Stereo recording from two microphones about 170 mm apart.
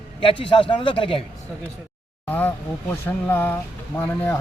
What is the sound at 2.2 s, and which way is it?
Speech, 10° left (ahead or behind).